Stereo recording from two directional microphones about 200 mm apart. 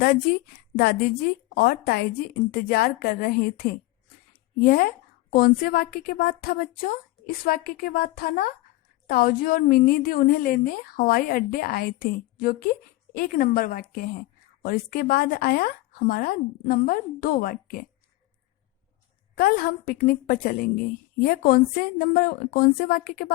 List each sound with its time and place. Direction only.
0.0 s a woman's voice: 45° left (ahead or behind)
19.4 s a woman's voice: 50° left (ahead or behind)